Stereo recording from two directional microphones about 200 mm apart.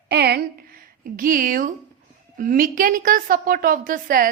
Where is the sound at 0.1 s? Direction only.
55° right (ahead or behind).